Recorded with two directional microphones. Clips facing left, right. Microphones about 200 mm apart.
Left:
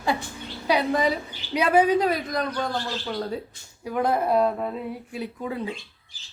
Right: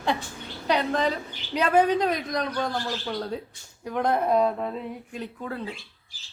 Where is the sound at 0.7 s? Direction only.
10° left (ahead or behind).